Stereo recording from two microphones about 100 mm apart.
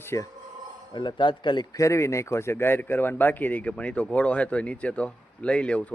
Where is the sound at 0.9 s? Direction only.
50° left (ahead or behind).